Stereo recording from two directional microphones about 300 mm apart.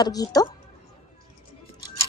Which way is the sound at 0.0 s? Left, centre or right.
Centre.